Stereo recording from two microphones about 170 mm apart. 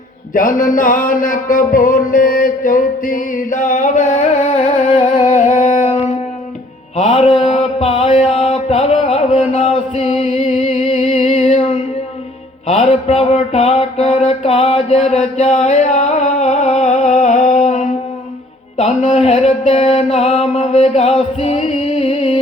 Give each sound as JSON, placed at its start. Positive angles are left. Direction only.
{"t": 0.3, "sound": "music", "side_deg": 50}
{"t": 6.9, "sound": "mantra", "side_deg": 40}
{"t": 10.2, "sound": "music", "side_deg": 40}
{"t": 12.7, "sound": "a sound", "side_deg": 35}
{"t": 18.8, "sound": "mantra", "side_deg": 40}